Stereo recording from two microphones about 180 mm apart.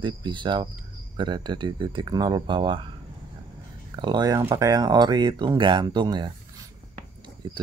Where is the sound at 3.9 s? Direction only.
25° right (ahead or behind).